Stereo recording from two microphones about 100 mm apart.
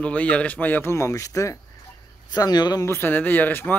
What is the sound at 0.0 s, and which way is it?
Speech, 15° left (ahead or behind).